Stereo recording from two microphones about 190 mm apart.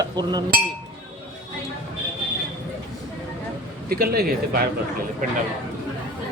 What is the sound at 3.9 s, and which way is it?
Speech, 50° right (ahead or behind).